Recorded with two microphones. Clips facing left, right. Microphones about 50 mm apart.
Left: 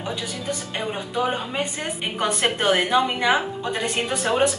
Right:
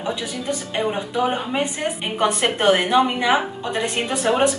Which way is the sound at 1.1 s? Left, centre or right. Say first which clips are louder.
Right 1 dB; centre.